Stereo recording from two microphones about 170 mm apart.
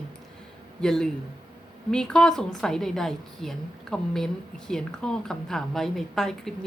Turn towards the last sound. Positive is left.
turn(degrees=0)  # may be behind; listen again after turning